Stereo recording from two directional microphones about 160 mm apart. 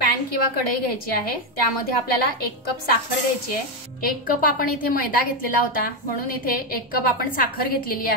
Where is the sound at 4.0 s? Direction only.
65° left (ahead or behind).